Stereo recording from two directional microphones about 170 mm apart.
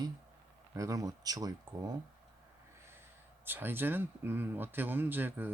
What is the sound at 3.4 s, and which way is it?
Speech, 10° right (ahead or behind).